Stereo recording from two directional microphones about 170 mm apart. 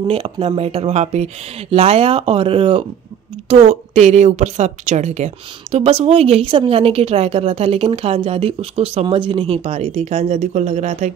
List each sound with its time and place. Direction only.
0.1 s a woman's voice: 30° right (ahead or behind)